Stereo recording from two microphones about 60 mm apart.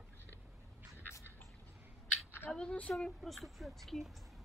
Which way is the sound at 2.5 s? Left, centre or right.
Centre.